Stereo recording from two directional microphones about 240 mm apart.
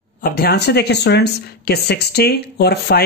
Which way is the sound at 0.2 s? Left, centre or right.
Left.